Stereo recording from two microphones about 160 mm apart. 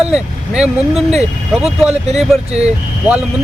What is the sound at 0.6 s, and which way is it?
Speech, 5° right (ahead or behind).